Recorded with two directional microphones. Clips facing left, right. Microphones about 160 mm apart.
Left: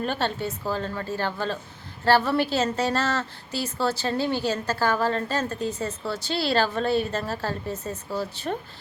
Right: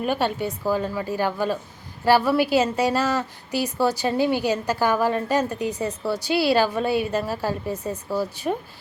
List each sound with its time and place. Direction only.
0.0 s a woman's voice: 10° right (ahead or behind)